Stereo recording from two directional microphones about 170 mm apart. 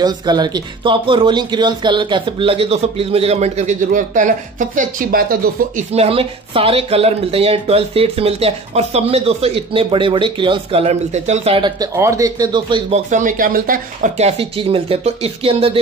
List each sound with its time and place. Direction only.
0.0 s speech: 25° right (ahead or behind); by 5.9 s 55° right (ahead or behind)
5.9 s speech: 35° right (ahead or behind)
11.8 s speech: 20° right (ahead or behind)
13.1 s speech: 50° right (ahead or behind)
14.1 s speech: 35° right (ahead or behind)